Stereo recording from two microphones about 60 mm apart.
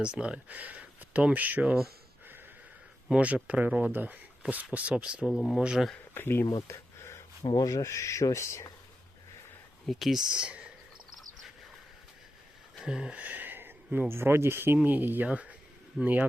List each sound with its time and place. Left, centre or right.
0.0 s speech: centre
3.2 s speech: right
3.9 s speech: right
5.3 s speech: centre
5.5 s speech: centre
6.1 s speech: left
6.4 s a sound: left
7.6 s speech: left
9.8 s speech: centre
10.1 s speech: centre
12.8 s a sound: centre
13.1 s a sound: right
14.1 s speech: right
15.3 s speech: right